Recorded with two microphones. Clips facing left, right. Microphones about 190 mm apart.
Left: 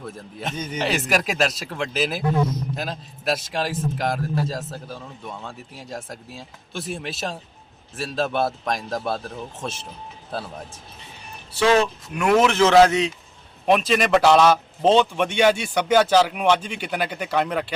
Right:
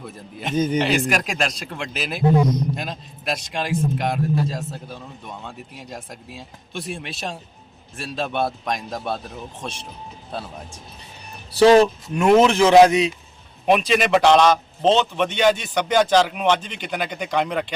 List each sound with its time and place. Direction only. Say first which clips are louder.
0.0 s a man's voice: even; centre (ahead or behind)
0.5 s a man's voice: right 14 dB; 35° right (ahead or behind)
0.8 s a man's voice: right 2 dB; centre (ahead or behind)
11.5 s speech: right 6 dB; 35° right (ahead or behind); by 13.1 s 15° right (ahead or behind)
13.7 s a man's voice: right 1 dB; centre (ahead or behind)